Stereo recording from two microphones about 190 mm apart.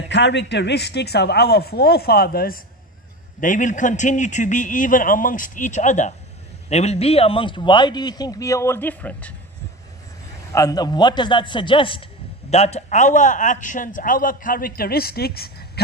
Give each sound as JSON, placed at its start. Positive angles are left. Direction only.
{"t": 0.1, "sound": "a man's voice", "side_deg": 65}
{"t": 10.5, "sound": "a man's voice", "side_deg": 20}